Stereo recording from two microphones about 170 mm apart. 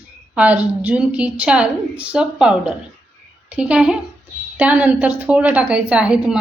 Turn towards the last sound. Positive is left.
turn(degrees=-5)  # may be behind; listen again after turning